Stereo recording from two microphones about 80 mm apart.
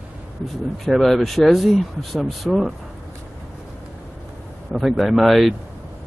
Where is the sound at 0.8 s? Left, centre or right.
Centre.